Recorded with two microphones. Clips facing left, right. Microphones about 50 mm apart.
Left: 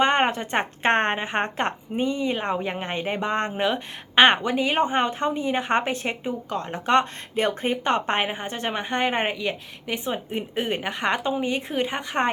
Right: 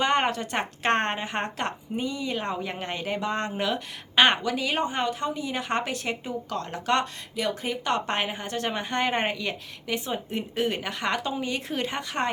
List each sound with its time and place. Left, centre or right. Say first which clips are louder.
0.0 s a woman's voice: left 3 dB; left